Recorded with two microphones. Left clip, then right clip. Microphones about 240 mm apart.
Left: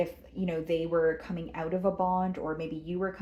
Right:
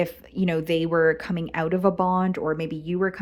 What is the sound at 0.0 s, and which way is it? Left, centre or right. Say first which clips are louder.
Speech: right 6 dB; right.